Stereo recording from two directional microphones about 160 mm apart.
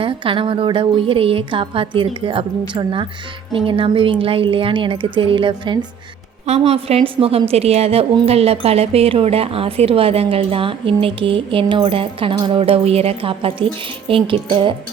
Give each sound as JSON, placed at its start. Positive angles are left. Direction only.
{"t": 0.0, "sound": "a woman's voice", "side_deg": -35}